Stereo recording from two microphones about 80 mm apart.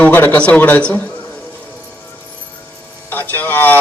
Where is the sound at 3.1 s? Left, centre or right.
Left.